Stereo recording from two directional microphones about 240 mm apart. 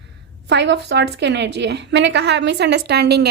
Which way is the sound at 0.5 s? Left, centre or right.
Right.